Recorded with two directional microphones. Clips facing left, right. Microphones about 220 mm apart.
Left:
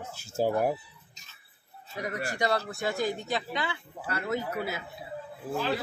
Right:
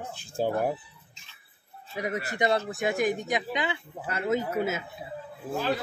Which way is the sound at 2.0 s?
20° right (ahead or behind).